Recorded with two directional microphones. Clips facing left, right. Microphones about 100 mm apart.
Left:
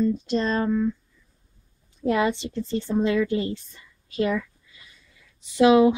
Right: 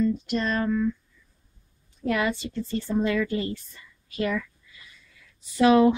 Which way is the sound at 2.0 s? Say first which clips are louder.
Left 3 dB; 25° left (ahead or behind).